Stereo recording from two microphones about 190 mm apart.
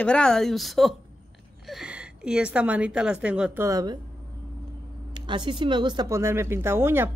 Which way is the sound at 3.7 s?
20° right (ahead or behind).